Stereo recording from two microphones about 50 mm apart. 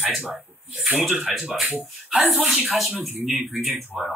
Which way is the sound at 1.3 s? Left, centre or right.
Centre.